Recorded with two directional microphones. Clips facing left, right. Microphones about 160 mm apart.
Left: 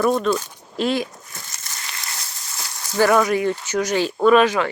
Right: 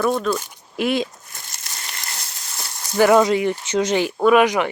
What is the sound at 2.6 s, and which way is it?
Speech, 15° right (ahead or behind).